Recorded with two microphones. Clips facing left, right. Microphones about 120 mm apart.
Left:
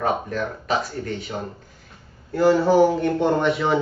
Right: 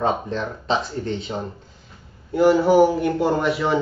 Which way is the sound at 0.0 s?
25° right (ahead or behind).